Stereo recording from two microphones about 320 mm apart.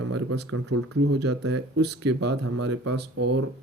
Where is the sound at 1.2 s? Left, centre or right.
Right.